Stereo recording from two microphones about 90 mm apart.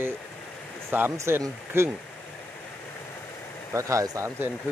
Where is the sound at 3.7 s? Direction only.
35° right (ahead or behind).